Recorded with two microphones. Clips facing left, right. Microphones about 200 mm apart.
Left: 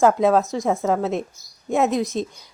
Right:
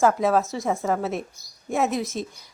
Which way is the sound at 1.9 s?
15° left (ahead or behind).